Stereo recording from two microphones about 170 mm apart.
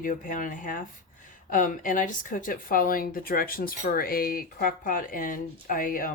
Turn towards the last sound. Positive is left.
turn(degrees=55)  # may be behind; listen again after turning